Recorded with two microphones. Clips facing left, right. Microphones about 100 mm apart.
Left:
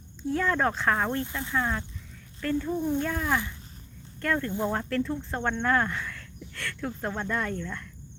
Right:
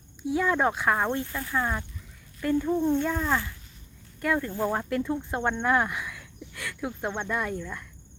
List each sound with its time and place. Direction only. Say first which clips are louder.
0.2 s speech: right 1 dB; 10° right (ahead or behind)
1.2 s speech: even; 20° left (ahead or behind)
1.5 s speech: even; 20° right (ahead or behind)
3.0 s speech: right 1 dB; 10° right (ahead or behind)